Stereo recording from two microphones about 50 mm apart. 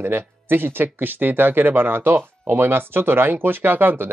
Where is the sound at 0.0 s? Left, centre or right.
Right.